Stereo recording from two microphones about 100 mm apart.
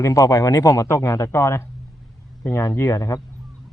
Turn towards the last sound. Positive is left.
turn(degrees=30)  # may be behind; listen again after turning